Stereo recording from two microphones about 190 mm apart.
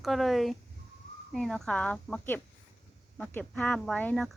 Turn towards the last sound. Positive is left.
turn(degrees=5)  # may be behind; listen again after turning